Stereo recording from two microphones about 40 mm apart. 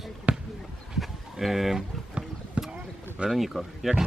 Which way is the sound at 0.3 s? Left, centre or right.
Right.